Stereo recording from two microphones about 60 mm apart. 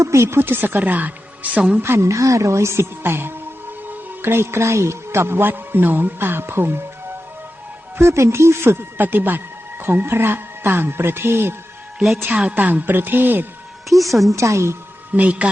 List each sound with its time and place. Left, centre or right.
0.0 s speech: right
1.8 s a woman's voice: right
7.9 s speech: right
12.5 s speech: right
13.9 s a woman's voice: centre
14.3 s a woman's voice: right
15.1 s a man's voice: right